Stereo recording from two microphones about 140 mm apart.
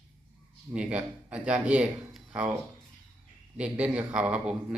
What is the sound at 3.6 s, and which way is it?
A man's voice, 10° right (ahead or behind).